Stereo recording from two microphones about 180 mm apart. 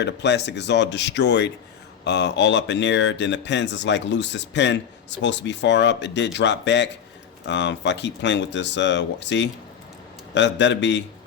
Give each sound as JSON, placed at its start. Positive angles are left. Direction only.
{"t": 0.0, "sound": "speech", "side_deg": 75}